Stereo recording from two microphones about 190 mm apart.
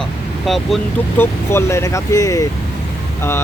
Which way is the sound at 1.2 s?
15° left (ahead or behind).